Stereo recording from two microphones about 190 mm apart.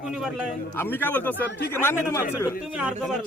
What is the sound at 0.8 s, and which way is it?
Speech, 10° left (ahead or behind).